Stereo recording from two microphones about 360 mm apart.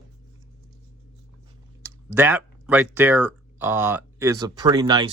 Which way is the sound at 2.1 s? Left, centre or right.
Centre.